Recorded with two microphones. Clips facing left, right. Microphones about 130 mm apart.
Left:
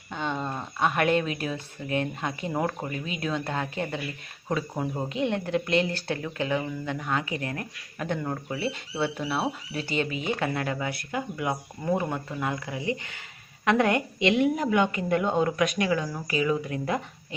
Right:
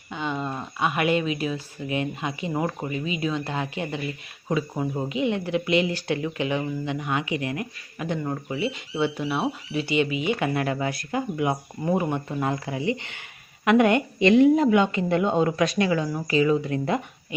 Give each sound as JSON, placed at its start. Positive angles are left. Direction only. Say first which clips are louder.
{"t": 0.1, "sound": "a sound", "louder": "right 2 dB", "side_deg": -5}
{"t": 1.9, "sound": "speech", "louder": "right 1 dB", "side_deg": -10}
{"t": 9.0, "sound": "speech", "louder": "right 4 dB", "side_deg": -15}
{"t": 9.3, "sound": "speech", "louder": "right 3 dB", "side_deg": -5}
{"t": 9.8, "sound": "speech", "louder": "right 5 dB", "side_deg": 40}
{"t": 10.4, "sound": "speech", "louder": "right 4 dB", "side_deg": -20}
{"t": 14.2, "sound": "speech", "louder": "right 7 dB", "side_deg": -45}
{"t": 14.4, "sound": "speech", "louder": "right 6 dB", "side_deg": -25}